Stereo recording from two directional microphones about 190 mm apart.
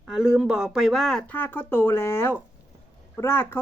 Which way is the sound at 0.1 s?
5° right (ahead or behind).